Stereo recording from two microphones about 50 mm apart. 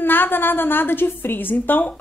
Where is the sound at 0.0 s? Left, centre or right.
Left.